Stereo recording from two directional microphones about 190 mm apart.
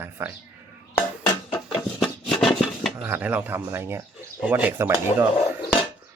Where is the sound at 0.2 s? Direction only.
15° right (ahead or behind).